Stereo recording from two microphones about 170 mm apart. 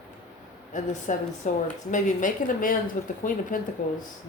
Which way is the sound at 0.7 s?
45° left (ahead or behind).